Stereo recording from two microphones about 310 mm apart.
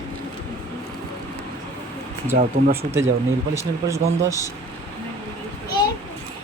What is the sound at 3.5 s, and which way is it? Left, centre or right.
Speech, centre.